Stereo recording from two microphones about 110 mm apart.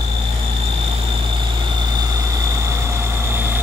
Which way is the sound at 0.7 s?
55° right (ahead or behind).